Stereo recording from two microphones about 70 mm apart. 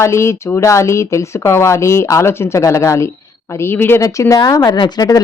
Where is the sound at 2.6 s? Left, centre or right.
Left.